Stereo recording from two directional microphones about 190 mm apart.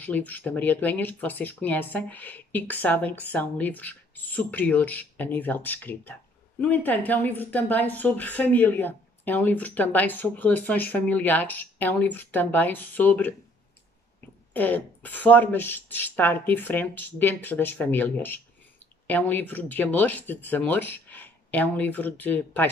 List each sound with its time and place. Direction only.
0.0 s speech: 10° left (ahead or behind)
14.5 s speech: 10° left (ahead or behind)